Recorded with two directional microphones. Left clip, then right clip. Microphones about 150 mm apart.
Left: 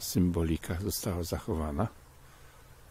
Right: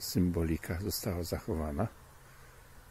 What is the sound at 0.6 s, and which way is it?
Speech, 15° left (ahead or behind).